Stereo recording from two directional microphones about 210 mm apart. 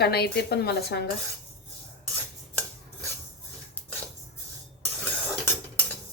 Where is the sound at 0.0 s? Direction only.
50° left (ahead or behind).